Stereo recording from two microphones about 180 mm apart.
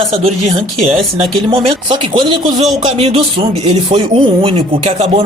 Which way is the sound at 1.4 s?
25° right (ahead or behind).